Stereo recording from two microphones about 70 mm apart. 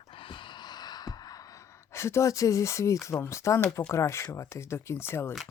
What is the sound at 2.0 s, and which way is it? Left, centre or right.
Speech, left.